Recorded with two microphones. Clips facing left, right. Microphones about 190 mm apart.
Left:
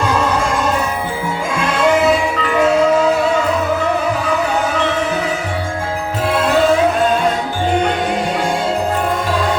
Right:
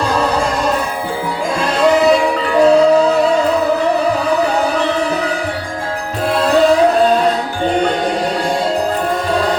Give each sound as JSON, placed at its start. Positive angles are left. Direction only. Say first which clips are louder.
{"t": 0.0, "sound": "music", "louder": "right 1 dB", "side_deg": -35}
{"t": 1.5, "sound": "music", "louder": "right 2 dB", "side_deg": -35}